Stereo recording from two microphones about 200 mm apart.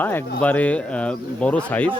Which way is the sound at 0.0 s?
10° left (ahead or behind).